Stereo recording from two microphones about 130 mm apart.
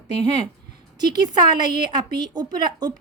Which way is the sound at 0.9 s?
30° right (ahead or behind).